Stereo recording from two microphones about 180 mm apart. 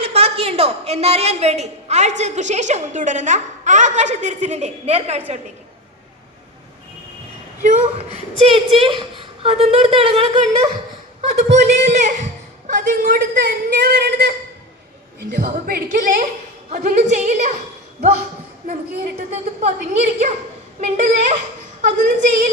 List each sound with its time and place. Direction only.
0.0 s a woman's voice: 35° right (ahead or behind)
7.6 s a woman's voice: 45° right (ahead or behind)
19.3 s a woman's voice: 40° right (ahead or behind)